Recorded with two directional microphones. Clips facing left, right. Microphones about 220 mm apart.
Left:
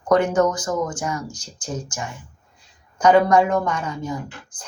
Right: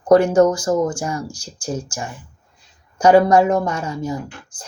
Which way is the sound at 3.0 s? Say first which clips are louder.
Right 3 dB; 25° right (ahead or behind).